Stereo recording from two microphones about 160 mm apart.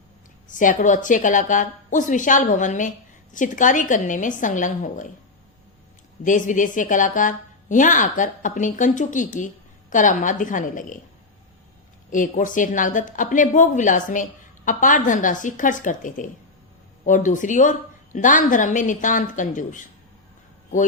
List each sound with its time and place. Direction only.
0.4 s a woman's voice: 55° left (ahead or behind)
6.2 s a woman's voice: 55° left (ahead or behind)
12.1 s a woman's voice: 55° left (ahead or behind)